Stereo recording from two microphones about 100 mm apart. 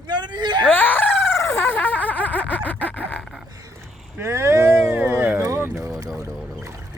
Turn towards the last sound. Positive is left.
turn(degrees=-25)  # may be behind; listen again after turning